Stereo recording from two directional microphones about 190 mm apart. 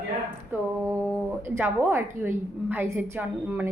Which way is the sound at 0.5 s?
10° right (ahead or behind).